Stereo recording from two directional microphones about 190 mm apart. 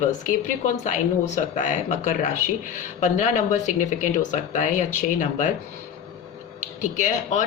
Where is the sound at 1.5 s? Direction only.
40° left (ahead or behind).